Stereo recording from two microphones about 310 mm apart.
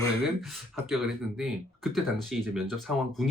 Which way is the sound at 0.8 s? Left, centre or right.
Centre.